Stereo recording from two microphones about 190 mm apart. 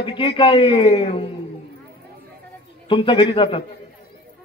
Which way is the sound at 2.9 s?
25° left (ahead or behind).